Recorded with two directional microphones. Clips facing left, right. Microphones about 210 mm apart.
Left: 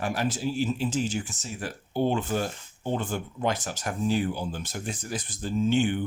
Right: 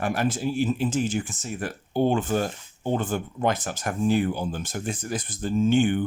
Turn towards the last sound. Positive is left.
turn(degrees=-50)  # may be behind; listen again after turning